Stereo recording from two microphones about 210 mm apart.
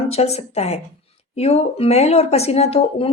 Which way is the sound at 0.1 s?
30° left (ahead or behind).